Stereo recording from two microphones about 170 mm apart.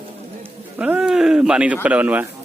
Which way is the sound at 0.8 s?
5° right (ahead or behind).